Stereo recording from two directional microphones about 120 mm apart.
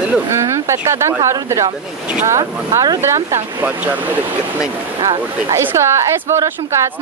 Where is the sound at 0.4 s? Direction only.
25° right (ahead or behind).